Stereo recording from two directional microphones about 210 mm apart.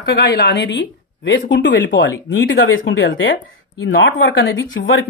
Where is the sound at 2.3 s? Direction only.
65° left (ahead or behind).